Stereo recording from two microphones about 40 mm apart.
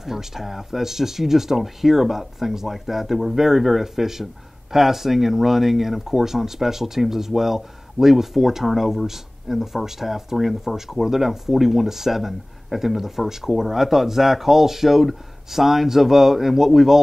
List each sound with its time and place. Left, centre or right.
0.0 s speech: centre